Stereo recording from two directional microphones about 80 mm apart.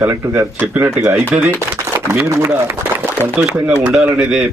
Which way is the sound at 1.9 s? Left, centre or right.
Right.